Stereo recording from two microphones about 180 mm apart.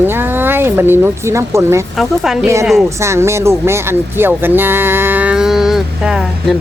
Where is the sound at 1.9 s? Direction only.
Centre (ahead or behind).